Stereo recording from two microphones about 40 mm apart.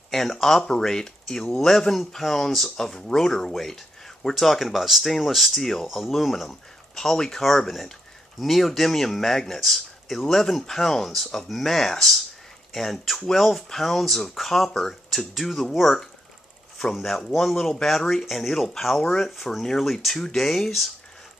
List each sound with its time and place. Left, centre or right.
0.1 s speech: centre